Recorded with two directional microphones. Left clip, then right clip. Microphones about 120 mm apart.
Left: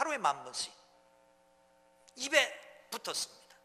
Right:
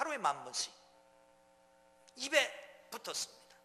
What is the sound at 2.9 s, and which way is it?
Speech, 35° left (ahead or behind).